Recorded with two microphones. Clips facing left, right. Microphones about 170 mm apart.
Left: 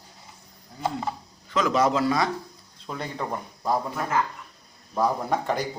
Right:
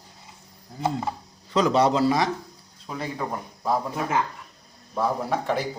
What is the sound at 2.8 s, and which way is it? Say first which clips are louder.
Speech: right 1 dB; 5° right (ahead or behind).